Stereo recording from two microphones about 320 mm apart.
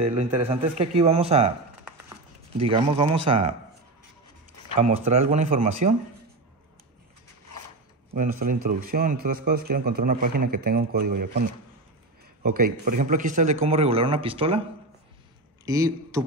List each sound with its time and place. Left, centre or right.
0.0 s a man's voice: centre
2.5 s speech: centre
4.7 s a man's voice: right
8.1 s a man's voice: right
12.4 s a man's voice: right
15.6 s a man's voice: centre